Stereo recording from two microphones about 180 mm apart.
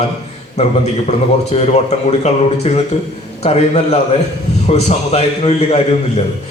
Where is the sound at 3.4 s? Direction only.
35° left (ahead or behind).